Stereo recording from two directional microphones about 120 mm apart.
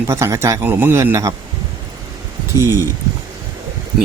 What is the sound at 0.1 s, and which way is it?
A man's voice, 20° right (ahead or behind).